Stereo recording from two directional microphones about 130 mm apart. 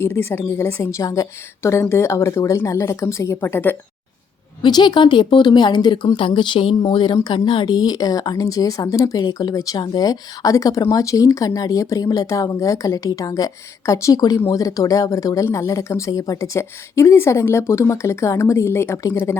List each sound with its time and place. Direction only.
0.0 s speech: 15° left (ahead or behind)
4.6 s speech: 35° left (ahead or behind)